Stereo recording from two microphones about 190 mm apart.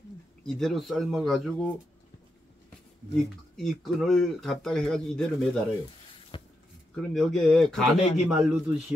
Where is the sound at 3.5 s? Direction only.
Centre (ahead or behind).